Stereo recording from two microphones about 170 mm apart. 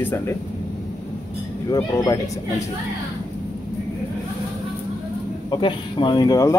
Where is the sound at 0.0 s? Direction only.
10° left (ahead or behind).